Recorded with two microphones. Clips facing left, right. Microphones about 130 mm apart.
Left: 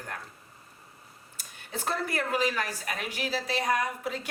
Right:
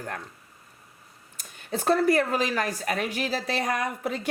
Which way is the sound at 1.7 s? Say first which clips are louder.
Right 10 dB; 40° right (ahead or behind).